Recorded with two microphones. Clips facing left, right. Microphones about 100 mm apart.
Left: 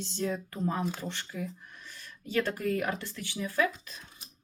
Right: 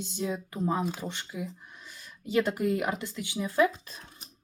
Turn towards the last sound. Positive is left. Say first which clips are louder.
# right 4 dB
turn(degrees=-30)  # may be behind; listen again after turning